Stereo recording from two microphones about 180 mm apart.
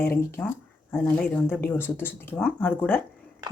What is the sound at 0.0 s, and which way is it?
Speech, 15° left (ahead or behind).